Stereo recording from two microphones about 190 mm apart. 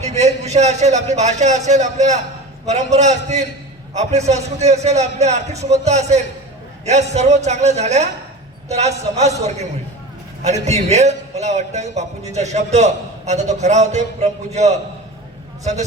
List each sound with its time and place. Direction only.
0.0 s a man's voice: 35° right (ahead or behind)